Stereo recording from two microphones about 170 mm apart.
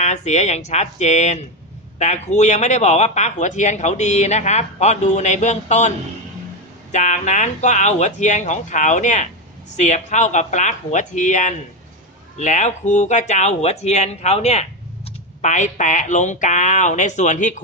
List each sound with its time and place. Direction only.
0.0 s speech: 45° left (ahead or behind)
6.9 s speech: 45° left (ahead or behind)